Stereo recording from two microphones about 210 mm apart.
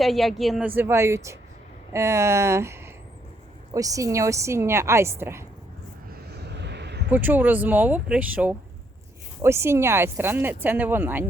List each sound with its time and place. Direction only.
0.0 s speech: centre (ahead or behind)
0.8 s speech: 10° right (ahead or behind)
6.2 s a sound: 50° right (ahead or behind)
7.1 s speech: 10° right (ahead or behind)